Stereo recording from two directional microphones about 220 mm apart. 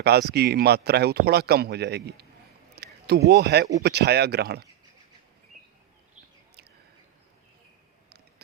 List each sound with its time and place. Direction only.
0.0 s speech: 50° right (ahead or behind)
2.7 s a sound: 50° right (ahead or behind)
3.2 s speech: 50° right (ahead or behind)